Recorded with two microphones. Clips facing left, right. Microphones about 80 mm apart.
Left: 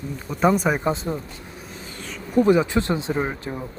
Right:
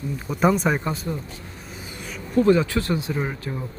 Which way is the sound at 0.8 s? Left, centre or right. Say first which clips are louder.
Left 4 dB; left.